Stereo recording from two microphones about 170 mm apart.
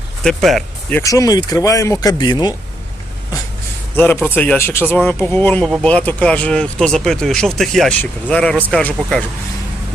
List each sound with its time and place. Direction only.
0.3 s speech: centre (ahead or behind)
0.9 s speech: 20° left (ahead or behind)
3.9 s speech: 10° left (ahead or behind)